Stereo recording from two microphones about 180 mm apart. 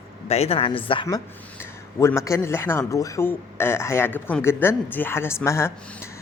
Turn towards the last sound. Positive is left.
turn(degrees=15)  # may be behind; listen again after turning